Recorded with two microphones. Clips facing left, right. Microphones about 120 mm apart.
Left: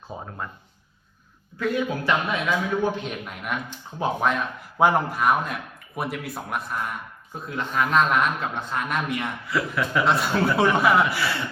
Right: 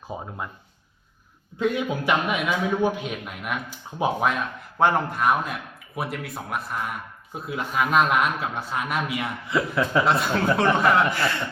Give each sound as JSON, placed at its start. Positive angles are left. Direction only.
{"t": 0.1, "sound": "speech", "side_deg": -15}
{"t": 1.5, "sound": "a man's voice", "side_deg": -20}
{"t": 3.9, "sound": "speech", "side_deg": -15}
{"t": 4.3, "sound": "a man's voice", "side_deg": 5}
{"t": 9.5, "sound": "a man's voice", "side_deg": -25}
{"t": 10.1, "sound": "a man's voice", "side_deg": 0}